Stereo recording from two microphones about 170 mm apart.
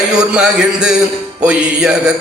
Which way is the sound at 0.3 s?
5° right (ahead or behind).